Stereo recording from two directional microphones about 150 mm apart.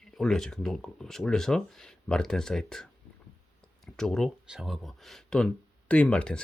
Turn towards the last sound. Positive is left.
turn(degrees=5)  # may be behind; listen again after turning